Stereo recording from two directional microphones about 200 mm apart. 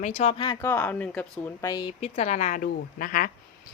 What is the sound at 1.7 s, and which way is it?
A woman's voice, 25° left (ahead or behind).